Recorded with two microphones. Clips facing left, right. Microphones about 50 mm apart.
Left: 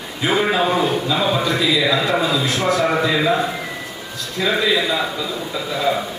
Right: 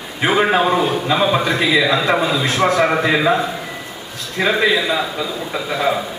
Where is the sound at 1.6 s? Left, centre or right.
Right.